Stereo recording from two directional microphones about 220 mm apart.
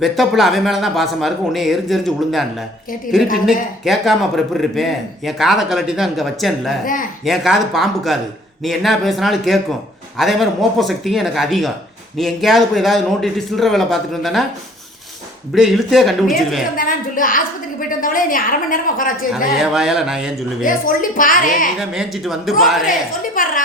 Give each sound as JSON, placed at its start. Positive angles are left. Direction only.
{"t": 0.0, "sound": "speech", "side_deg": 0}
{"t": 3.8, "sound": "speech", "side_deg": 0}
{"t": 15.5, "sound": "speech", "side_deg": 0}
{"t": 16.7, "sound": "a woman's voice", "side_deg": 40}
{"t": 19.5, "sound": "speech", "side_deg": 0}
{"t": 20.7, "sound": "a woman's voice", "side_deg": 40}
{"t": 21.8, "sound": "speech", "side_deg": 0}
{"t": 22.9, "sound": "a woman's voice", "side_deg": 35}